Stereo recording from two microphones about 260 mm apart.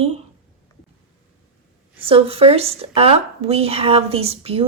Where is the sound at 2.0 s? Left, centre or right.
Right.